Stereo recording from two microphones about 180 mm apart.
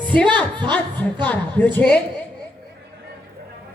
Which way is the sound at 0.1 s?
5° left (ahead or behind).